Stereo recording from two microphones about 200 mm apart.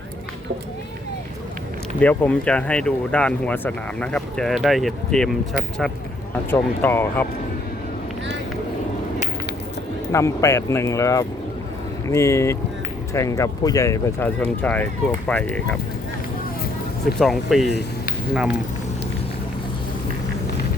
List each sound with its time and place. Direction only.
2.0 s speech: 5° left (ahead or behind)
6.5 s speech: 10° left (ahead or behind)
10.1 s speech: 15° left (ahead or behind)
17.2 s speech: centre (ahead or behind)